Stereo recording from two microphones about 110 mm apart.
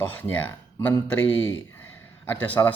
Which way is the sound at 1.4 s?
20° left (ahead or behind).